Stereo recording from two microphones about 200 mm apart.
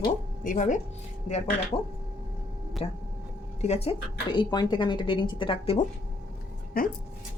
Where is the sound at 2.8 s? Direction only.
30° left (ahead or behind).